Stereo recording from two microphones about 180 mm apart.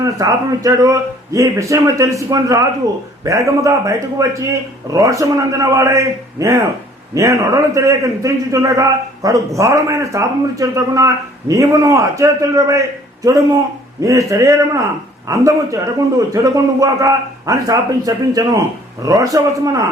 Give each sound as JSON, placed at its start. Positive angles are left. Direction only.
{"t": 0.0, "sound": "a man's voice", "side_deg": -20}
{"t": 14.0, "sound": "a man's voice", "side_deg": -15}